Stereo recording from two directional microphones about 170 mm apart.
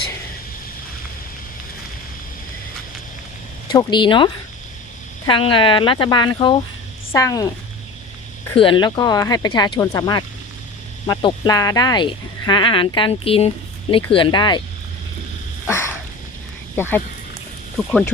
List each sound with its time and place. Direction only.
3.7 s speech: 25° left (ahead or behind)
8.5 s speech: 30° left (ahead or behind)
15.6 s dog: 15° left (ahead or behind)
16.7 s speech: 15° left (ahead or behind)